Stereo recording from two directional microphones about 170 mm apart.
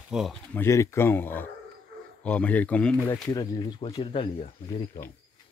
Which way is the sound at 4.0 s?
35° left (ahead or behind).